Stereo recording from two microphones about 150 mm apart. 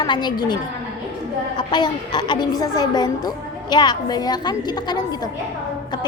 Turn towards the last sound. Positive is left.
turn(degrees=30)  # may be behind; listen again after turning